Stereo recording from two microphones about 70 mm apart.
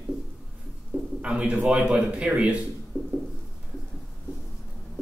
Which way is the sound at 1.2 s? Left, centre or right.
Centre.